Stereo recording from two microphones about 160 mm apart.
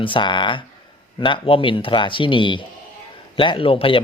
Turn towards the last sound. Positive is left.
turn(degrees=35)  # may be behind; listen again after turning